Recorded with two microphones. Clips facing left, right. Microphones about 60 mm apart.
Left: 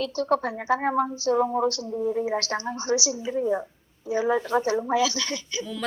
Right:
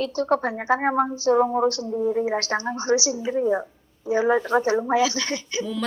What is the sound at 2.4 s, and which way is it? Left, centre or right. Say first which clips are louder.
Speech: right 3 dB; right.